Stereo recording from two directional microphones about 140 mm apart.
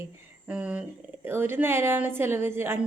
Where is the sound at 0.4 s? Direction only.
10° right (ahead or behind).